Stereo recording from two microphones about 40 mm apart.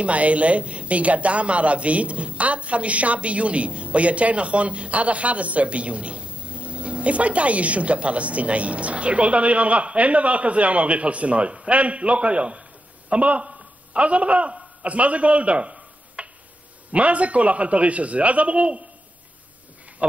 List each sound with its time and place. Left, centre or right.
0.0 s a woman's voice: right
20.0 s a woman's voice: right